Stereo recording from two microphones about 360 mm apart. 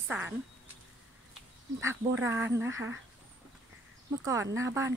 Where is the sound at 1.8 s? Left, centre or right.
Centre.